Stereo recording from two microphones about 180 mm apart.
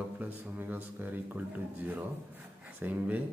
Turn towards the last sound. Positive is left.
turn(degrees=-10)  # may be behind; listen again after turning